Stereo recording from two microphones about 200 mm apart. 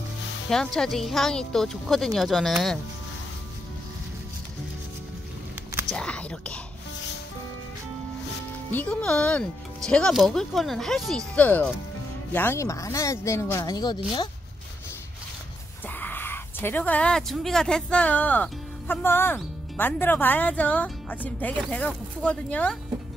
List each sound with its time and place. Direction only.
0.5 s a woman's voice: 5° left (ahead or behind)
5.9 s speech: 5° left (ahead or behind)
8.7 s a woman's voice: 5° left (ahead or behind); by 14.3 s 20° left (ahead or behind)
16.0 s speech: 10° left (ahead or behind)